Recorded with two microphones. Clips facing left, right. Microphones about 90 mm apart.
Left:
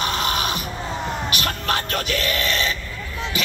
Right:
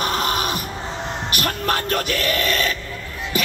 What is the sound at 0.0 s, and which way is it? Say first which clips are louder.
Music: right 1 dB; 45° right (ahead or behind).